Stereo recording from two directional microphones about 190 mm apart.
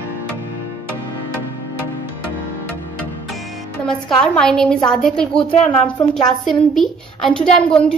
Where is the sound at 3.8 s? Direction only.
5° left (ahead or behind).